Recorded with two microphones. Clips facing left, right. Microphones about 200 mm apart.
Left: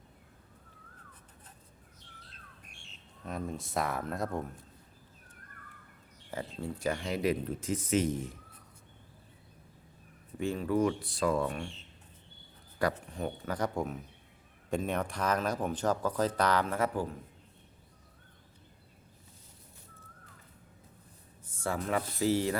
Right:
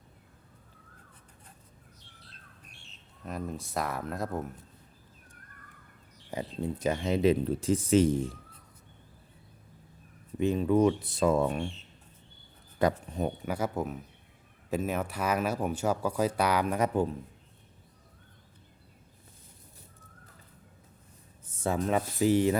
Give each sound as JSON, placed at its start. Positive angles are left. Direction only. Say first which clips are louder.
{"t": 3.2, "sound": "speech", "louder": "right 1 dB", "side_deg": 0}
{"t": 6.6, "sound": "speech", "louder": "right 4 dB", "side_deg": -20}
{"t": 10.3, "sound": "speech", "louder": "right 5 dB", "side_deg": -20}
{"t": 12.8, "sound": "speech", "louder": "right 4 dB", "side_deg": -20}
{"t": 21.5, "sound": "speech", "louder": "right 4 dB", "side_deg": -20}